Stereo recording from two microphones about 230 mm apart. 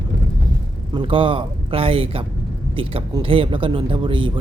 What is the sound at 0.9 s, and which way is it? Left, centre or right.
Speech, right.